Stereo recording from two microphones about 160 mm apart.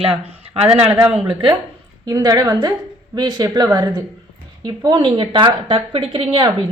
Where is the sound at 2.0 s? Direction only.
20° right (ahead or behind).